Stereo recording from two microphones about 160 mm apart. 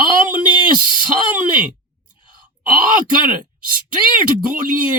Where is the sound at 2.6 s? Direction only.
60° right (ahead or behind).